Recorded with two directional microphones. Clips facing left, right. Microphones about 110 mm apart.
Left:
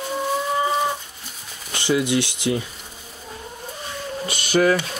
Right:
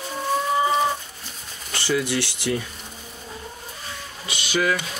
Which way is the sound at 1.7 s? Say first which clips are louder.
Left 3 dB; 20° left (ahead or behind).